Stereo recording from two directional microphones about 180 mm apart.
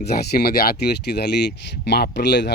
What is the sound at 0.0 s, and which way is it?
Speech, 60° left (ahead or behind).